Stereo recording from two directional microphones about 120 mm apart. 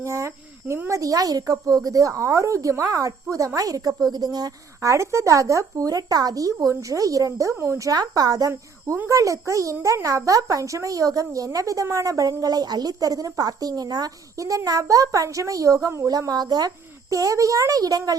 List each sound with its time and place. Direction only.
0.0 s a woman's voice: 25° right (ahead or behind)